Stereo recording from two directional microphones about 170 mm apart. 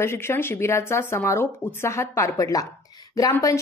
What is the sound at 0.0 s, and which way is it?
A woman's voice, 15° left (ahead or behind).